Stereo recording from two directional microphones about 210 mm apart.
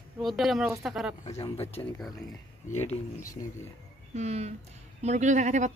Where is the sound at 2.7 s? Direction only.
30° left (ahead or behind).